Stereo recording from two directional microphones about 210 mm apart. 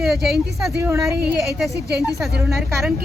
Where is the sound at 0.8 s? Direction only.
15° right (ahead or behind).